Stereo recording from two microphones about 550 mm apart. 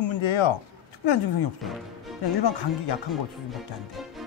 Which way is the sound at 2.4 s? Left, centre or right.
Left.